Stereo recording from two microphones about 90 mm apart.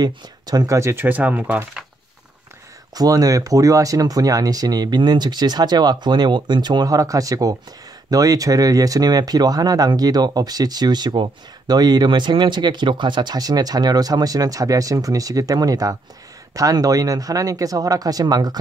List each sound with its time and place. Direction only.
0.0 s speech: 50° right (ahead or behind)
0.7 s speech: 30° right (ahead or behind)
3.0 s speech: 45° right (ahead or behind)